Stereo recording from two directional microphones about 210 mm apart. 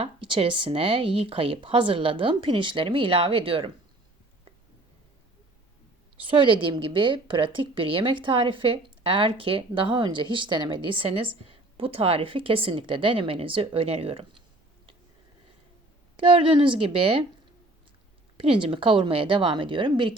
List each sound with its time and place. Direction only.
0.0 s a woman's voice: 25° right (ahead or behind)
6.3 s a woman's voice: 25° right (ahead or behind)
16.1 s a woman's voice: 25° right (ahead or behind)
18.3 s a woman's voice: 25° right (ahead or behind)